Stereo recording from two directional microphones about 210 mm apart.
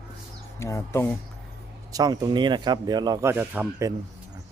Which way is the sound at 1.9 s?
15° right (ahead or behind).